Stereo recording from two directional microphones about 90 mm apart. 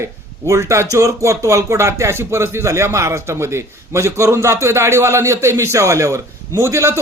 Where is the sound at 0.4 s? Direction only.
35° right (ahead or behind).